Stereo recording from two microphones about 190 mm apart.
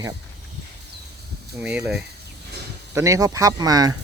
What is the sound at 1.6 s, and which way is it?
Speech, 5° right (ahead or behind).